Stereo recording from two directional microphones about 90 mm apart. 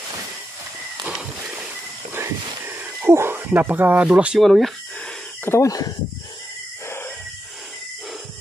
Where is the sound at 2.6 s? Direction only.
25° right (ahead or behind); by 4.4 s 10° right (ahead or behind).